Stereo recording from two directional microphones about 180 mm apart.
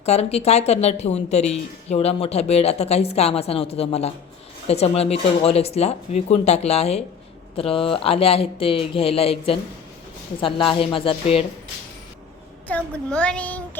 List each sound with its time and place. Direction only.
0.0 s a woman's voice: 35° left (ahead or behind)
12.6 s a child's voice: 10° left (ahead or behind)